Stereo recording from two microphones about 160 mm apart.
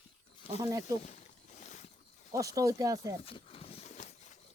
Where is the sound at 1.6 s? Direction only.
50° left (ahead or behind).